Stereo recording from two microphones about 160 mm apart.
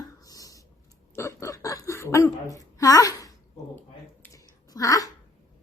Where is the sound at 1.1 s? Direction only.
15° left (ahead or behind).